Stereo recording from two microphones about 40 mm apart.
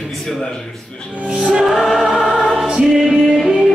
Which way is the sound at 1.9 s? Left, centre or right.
Centre.